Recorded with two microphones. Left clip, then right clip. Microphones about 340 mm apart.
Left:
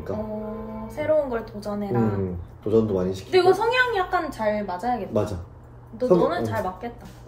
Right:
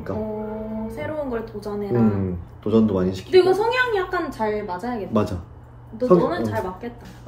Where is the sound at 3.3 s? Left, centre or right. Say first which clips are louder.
Right 2 dB; centre.